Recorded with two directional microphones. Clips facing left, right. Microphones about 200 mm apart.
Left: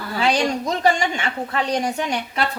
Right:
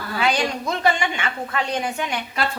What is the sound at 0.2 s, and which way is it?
A woman's voice, 35° left (ahead or behind).